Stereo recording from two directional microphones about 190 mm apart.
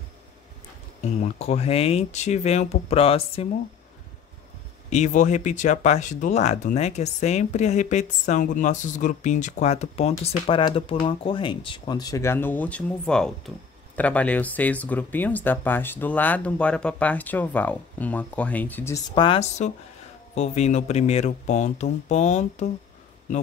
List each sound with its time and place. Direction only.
1.2 s speech: 35° left (ahead or behind)
4.8 s speech: 40° left (ahead or behind); by 19.0 s 10° left (ahead or behind)
19.1 s a woman's voice: 25° left (ahead or behind)